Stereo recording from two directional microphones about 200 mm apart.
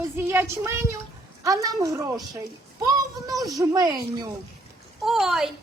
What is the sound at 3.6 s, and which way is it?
Speech, 15° right (ahead or behind).